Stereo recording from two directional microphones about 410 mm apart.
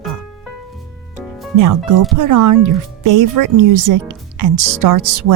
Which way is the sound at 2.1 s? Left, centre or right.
Right.